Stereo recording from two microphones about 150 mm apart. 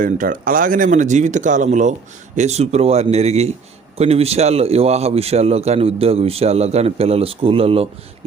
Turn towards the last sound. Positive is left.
turn(degrees=-40)  # may be behind; listen again after turning